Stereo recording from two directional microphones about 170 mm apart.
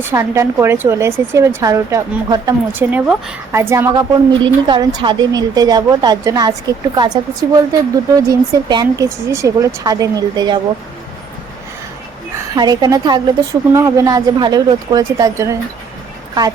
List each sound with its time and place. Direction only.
0.1 s a woman's voice: 15° right (ahead or behind)
2.7 s a woman's voice: 5° right (ahead or behind)
4.4 s a woman's voice: 25° right (ahead or behind)
12.3 s a woman's voice: 25° right (ahead or behind)